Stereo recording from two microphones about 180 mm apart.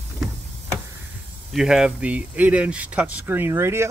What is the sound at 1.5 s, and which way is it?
Speech, 5° right (ahead or behind).